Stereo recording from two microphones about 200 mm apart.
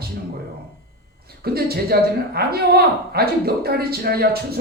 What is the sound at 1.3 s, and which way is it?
A woman's voice, 50° right (ahead or behind).